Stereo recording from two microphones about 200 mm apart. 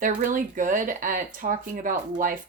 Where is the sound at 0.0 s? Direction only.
40° right (ahead or behind).